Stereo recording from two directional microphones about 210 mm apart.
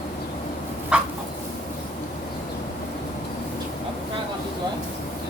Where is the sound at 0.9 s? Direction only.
5° right (ahead or behind).